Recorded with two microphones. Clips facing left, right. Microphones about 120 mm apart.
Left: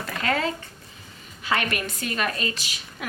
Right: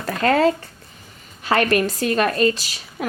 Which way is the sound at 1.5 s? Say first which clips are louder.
Right 8 dB; 45° right (ahead or behind).